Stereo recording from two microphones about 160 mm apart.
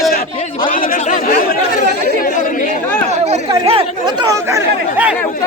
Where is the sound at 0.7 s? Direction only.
60° left (ahead or behind).